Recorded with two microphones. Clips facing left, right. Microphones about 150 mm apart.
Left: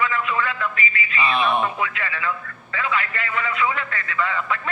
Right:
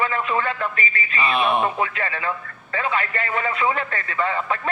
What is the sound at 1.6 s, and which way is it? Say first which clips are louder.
A man's voice: right 2 dB; 35° right (ahead or behind).